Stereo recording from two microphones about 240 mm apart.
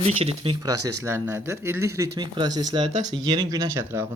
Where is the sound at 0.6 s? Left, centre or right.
Right.